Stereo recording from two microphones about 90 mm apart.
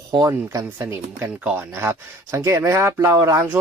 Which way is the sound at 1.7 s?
30° right (ahead or behind).